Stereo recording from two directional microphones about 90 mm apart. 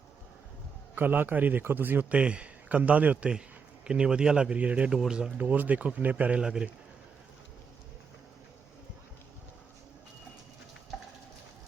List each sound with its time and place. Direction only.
0.9 s a man's voice: 20° right (ahead or behind)